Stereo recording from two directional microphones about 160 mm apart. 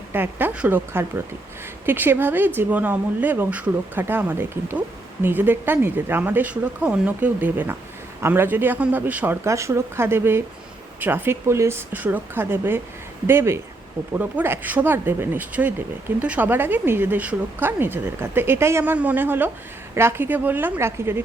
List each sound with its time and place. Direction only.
0.1 s speech: 10° right (ahead or behind)